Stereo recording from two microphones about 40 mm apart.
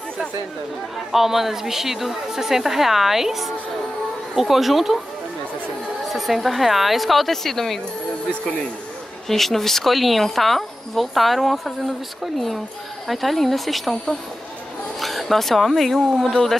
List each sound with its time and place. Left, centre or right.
0.9 s a woman's voice: centre
6.0 s speech: centre
8.3 s speech: left
9.3 s speech: centre
15.0 s speech: centre